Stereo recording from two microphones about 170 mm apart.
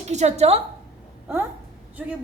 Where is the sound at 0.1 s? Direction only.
40° right (ahead or behind).